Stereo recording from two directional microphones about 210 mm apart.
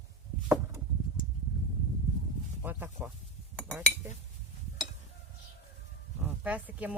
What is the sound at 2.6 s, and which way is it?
Speech, 10° right (ahead or behind).